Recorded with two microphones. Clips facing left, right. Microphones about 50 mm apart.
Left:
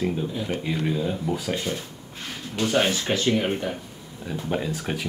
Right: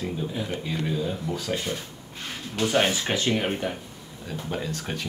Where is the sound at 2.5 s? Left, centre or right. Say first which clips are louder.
Left 1 dB; centre.